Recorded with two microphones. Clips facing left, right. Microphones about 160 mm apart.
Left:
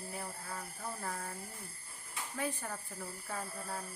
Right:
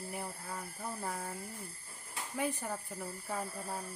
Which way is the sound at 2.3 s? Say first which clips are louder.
Right 3 dB; 15° right (ahead or behind).